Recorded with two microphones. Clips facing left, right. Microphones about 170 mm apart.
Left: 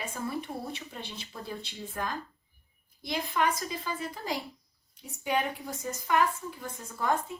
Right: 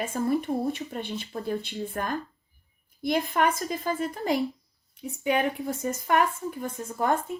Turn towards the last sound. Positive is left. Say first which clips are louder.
# right 4 dB
turn(degrees=-50)  # may be behind; listen again after turning